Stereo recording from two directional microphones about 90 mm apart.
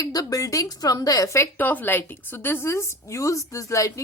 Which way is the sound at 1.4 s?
20° left (ahead or behind).